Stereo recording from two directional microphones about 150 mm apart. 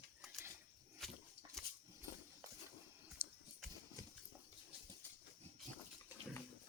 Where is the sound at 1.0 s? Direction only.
Centre (ahead or behind).